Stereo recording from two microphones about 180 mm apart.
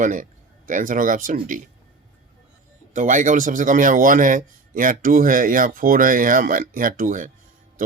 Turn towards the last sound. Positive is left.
turn(degrees=-45)  # may be behind; listen again after turning